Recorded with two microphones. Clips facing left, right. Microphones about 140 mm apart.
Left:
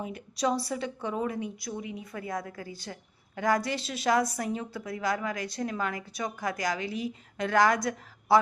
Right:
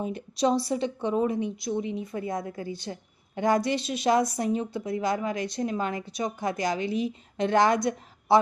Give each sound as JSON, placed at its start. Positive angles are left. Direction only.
{"t": 0.0, "sound": "a woman's voice", "side_deg": -25}